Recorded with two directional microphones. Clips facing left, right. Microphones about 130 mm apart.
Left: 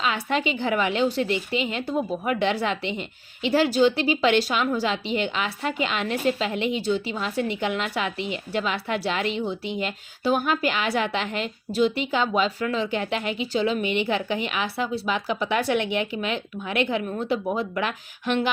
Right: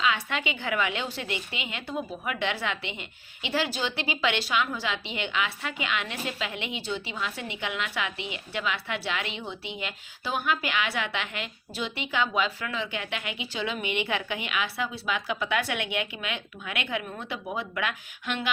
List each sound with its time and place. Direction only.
0.0 s a woman's voice: 35° left (ahead or behind)